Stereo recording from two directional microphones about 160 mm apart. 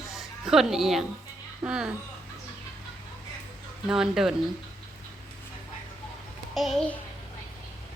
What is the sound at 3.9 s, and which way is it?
Speech, 5° right (ahead or behind).